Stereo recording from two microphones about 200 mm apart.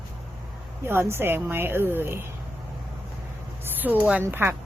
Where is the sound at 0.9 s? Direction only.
10° right (ahead or behind).